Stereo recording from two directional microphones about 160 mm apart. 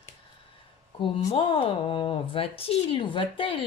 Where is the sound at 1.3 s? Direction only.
35° left (ahead or behind).